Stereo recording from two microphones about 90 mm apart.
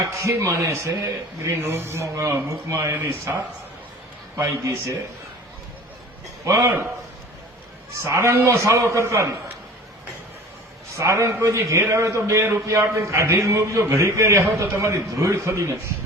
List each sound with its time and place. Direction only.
0.0 s speech: 35° right (ahead or behind)
6.4 s a man's voice: 30° right (ahead or behind)
8.0 s speech: 30° right (ahead or behind)
10.9 s speech: 35° right (ahead or behind)